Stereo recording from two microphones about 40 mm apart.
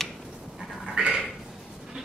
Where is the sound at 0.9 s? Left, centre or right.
Right.